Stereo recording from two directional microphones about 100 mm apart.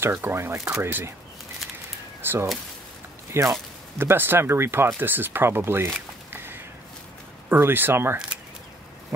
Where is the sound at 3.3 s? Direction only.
25° right (ahead or behind).